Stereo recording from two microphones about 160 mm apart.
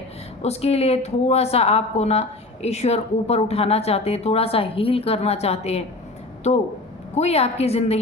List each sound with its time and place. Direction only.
0.4 s a woman's voice: 40° left (ahead or behind)
7.2 s a woman's voice: 40° left (ahead or behind)